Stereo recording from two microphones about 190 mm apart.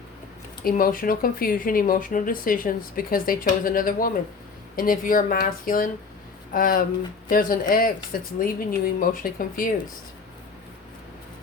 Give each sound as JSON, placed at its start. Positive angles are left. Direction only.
{"t": 0.6, "sound": "speech", "side_deg": 50}